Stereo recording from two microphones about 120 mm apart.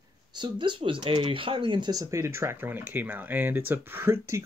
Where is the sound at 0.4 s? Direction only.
40° right (ahead or behind).